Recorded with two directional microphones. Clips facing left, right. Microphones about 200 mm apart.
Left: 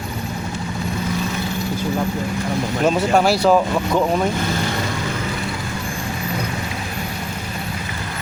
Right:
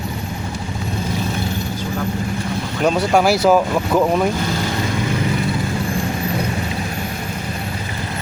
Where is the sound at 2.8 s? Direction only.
Centre (ahead or behind).